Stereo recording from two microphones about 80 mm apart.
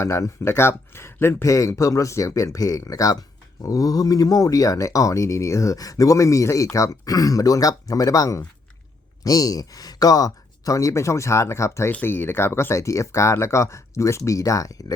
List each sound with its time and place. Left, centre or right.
0.0 s speech: left
11.9 s speech: left